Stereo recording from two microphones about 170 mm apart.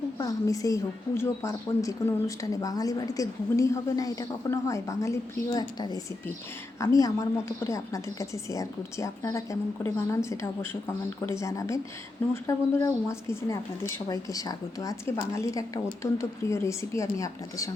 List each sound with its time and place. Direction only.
0.2 s a woman's voice: 20° left (ahead or behind)